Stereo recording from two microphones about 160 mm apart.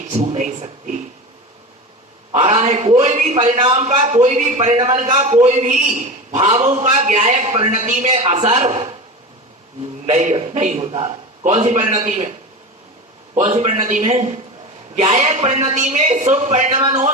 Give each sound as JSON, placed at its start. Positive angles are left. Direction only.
{"t": 0.1, "sound": "a man's voice", "side_deg": -45}
{"t": 2.3, "sound": "a man's voice", "side_deg": -35}
{"t": 10.1, "sound": "a man's voice", "side_deg": -45}
{"t": 13.3, "sound": "a man's voice", "side_deg": -45}